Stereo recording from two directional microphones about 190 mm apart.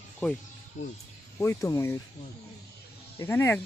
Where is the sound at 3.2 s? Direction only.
10° left (ahead or behind).